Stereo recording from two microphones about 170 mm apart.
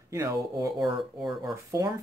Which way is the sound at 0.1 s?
20° right (ahead or behind).